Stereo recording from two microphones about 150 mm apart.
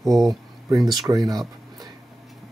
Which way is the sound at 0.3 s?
25° right (ahead or behind).